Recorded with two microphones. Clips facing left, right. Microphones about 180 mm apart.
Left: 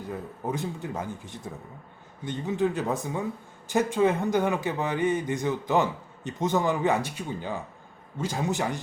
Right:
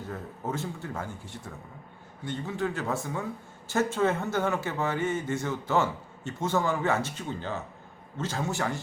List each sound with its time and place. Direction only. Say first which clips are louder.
0.1 s speech: left 3 dB; 15° left (ahead or behind)